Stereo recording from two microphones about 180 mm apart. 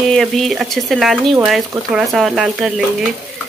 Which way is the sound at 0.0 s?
Centre (ahead or behind).